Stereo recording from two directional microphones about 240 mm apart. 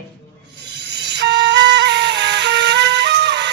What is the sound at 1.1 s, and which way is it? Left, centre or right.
Music, right.